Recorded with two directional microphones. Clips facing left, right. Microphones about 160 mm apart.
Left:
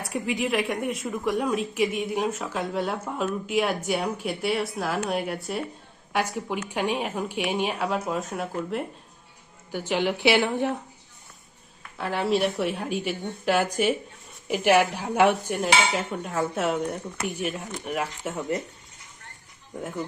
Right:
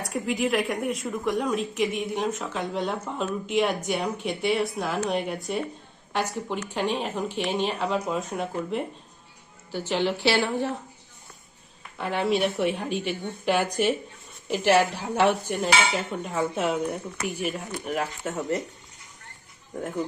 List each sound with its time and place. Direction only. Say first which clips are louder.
0.0 s a woman's voice: right 1 dB; centre (ahead or behind)
9.7 s speech: even; 10° left (ahead or behind)
11.9 s a woman's voice: even; centre (ahead or behind)